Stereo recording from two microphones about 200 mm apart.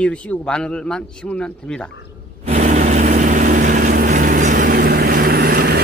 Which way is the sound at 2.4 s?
35° right (ahead or behind).